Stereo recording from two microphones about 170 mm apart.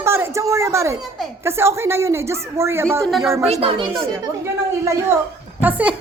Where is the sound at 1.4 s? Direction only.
15° right (ahead or behind).